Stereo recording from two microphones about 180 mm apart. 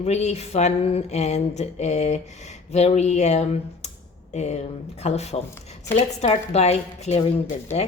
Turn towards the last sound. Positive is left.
turn(degrees=35)  # may be behind; listen again after turning